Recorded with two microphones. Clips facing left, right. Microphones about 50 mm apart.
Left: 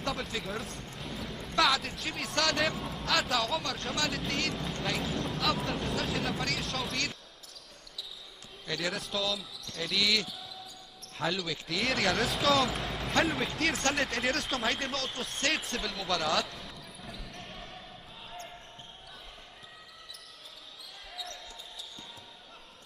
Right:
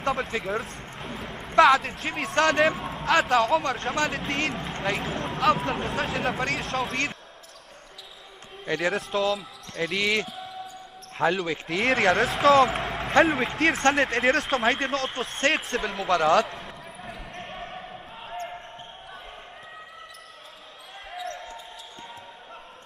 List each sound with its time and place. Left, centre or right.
0.6 s a sound: right
2.3 s speech: right
2.7 s speech: right
8.6 s a man's voice: right
13.2 s speech: right
13.5 s speech: right
13.9 s speech: right
16.6 s basketball bounce: right
21.1 s basketball bounce: right